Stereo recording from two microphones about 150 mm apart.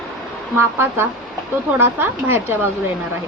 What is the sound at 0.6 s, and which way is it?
A woman's voice, 15° right (ahead or behind).